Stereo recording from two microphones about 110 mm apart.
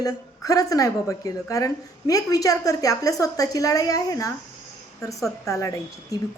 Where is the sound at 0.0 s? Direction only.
30° left (ahead or behind).